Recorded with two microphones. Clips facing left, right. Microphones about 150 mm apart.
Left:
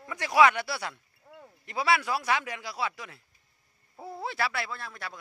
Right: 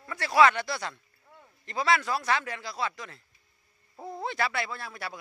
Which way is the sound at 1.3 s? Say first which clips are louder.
Left 5 dB; 40° left (ahead or behind).